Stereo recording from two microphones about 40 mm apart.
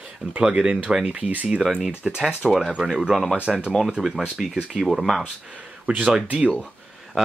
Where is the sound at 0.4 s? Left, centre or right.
Right.